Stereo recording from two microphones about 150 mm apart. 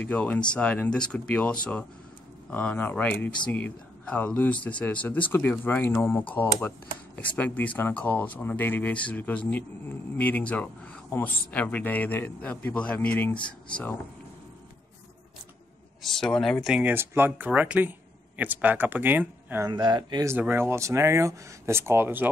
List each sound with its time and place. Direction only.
0.0 s speech: 10° left (ahead or behind)
16.0 s speech: 5° left (ahead or behind)
16.7 s speech: 10° right (ahead or behind)
19.7 s speech: 30° right (ahead or behind)
20.3 s speech: 15° right (ahead or behind)